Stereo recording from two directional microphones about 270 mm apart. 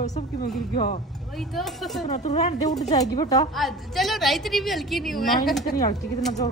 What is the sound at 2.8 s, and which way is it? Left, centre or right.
Speech, centre.